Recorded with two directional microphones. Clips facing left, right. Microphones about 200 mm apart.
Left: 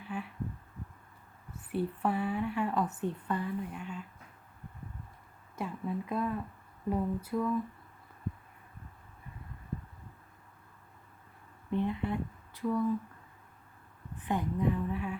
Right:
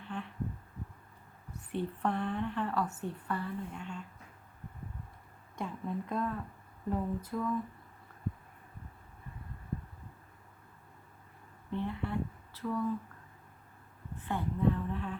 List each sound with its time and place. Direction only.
0.0 s a sound: 5° left (ahead or behind)
1.7 s a woman's voice: 5° left (ahead or behind)
5.5 s a woman's voice: 5° left (ahead or behind)
11.7 s speech: 15° left (ahead or behind)
14.2 s a woman's voice: 15° left (ahead or behind)